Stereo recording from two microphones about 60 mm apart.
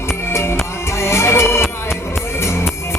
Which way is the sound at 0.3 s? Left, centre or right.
Left.